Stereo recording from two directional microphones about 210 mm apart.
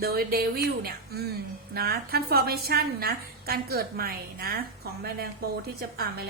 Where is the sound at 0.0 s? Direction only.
45° right (ahead or behind).